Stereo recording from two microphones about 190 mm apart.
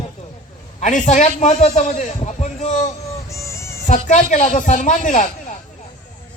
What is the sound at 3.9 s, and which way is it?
Speech, 40° left (ahead or behind).